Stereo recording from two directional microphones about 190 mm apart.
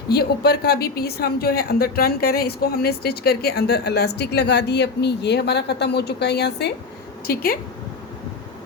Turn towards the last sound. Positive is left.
turn(degrees=50)  # may be behind; listen again after turning